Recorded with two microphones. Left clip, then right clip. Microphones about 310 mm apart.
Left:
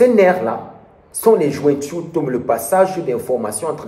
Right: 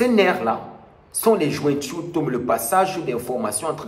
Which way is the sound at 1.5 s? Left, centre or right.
Centre.